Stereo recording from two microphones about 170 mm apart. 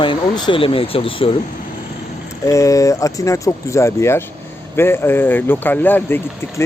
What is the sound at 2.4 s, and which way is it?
Speech, 20° left (ahead or behind).